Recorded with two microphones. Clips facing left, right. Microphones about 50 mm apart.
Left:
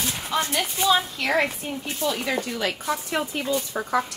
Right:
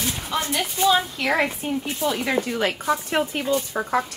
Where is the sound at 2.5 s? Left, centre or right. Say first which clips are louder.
Right 4 dB; right.